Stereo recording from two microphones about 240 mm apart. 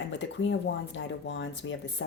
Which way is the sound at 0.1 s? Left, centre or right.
Left.